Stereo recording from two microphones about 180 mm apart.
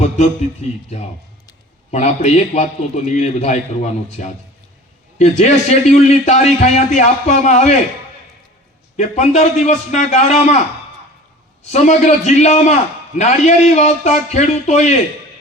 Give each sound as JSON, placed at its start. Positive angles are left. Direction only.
{"t": 0.6, "sound": "a man's voice", "side_deg": 40}
{"t": 1.9, "sound": "a man's voice", "side_deg": 40}
{"t": 5.1, "sound": "a man's voice", "side_deg": 40}
{"t": 9.0, "sound": "a man's voice", "side_deg": 40}
{"t": 11.7, "sound": "a man's voice", "side_deg": 40}